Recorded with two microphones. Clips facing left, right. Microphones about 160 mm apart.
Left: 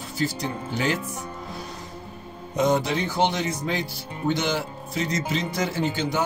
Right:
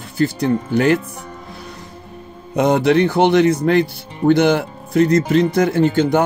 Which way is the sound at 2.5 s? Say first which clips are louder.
Right 8 dB; 65° right (ahead or behind).